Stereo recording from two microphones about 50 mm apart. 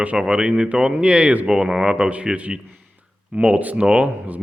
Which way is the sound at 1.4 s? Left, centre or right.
Centre.